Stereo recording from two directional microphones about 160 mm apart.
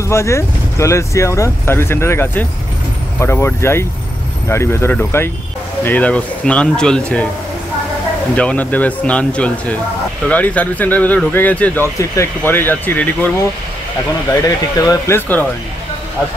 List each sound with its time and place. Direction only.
0.1 s speech: 15° left (ahead or behind)
8.4 s speech: 10° left (ahead or behind)
14.9 s speech: 15° left (ahead or behind)